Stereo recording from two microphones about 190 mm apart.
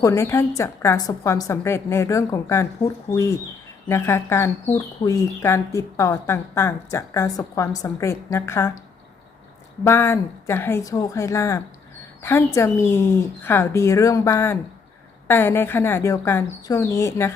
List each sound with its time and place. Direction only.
0.0 s speech: 15° left (ahead or behind)
9.8 s speech: 15° left (ahead or behind)